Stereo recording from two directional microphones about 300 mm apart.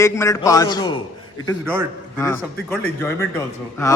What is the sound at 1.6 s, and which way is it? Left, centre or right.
Speech, centre.